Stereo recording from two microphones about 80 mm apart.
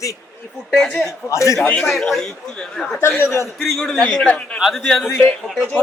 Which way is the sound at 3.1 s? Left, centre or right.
Left.